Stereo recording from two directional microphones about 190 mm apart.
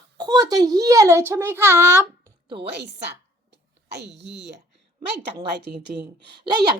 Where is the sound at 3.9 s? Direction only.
60° right (ahead or behind).